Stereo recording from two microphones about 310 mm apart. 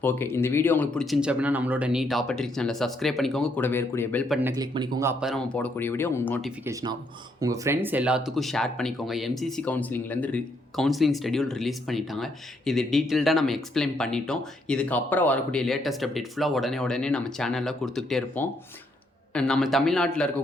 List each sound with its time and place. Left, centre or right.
0.0 s speech: centre
7.3 s speech: centre